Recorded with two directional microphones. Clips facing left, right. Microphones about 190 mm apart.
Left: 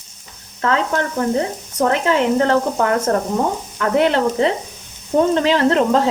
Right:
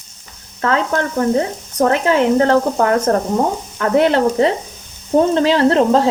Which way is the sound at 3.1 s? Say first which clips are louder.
Right 2 dB; 50° right (ahead or behind).